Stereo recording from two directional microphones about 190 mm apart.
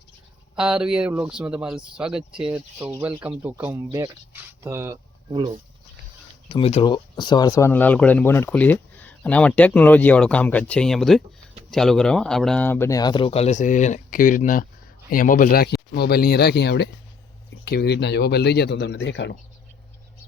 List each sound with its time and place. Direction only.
0.5 s speech: 5° right (ahead or behind)
5.3 s speech: 25° right (ahead or behind)
6.5 s speech: 30° left (ahead or behind); by 19.4 s 65° left (ahead or behind)